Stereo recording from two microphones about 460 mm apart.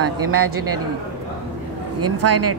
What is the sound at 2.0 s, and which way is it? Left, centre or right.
Speech, right.